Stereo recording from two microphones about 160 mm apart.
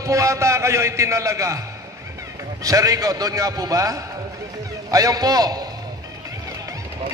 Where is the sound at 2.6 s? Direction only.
20° right (ahead or behind).